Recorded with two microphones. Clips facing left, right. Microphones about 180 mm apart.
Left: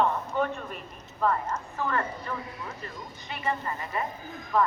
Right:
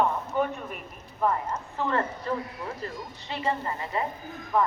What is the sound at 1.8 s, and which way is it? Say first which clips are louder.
Speech: right 3 dB; 25° right (ahead or behind).